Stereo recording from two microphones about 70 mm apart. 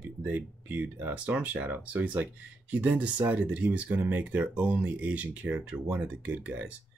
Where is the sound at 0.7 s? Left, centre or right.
Right.